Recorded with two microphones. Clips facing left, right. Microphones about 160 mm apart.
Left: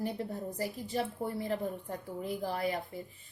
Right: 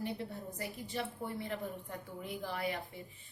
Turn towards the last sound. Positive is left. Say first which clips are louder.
# left 4 dB
turn(degrees=40)  # may be behind; listen again after turning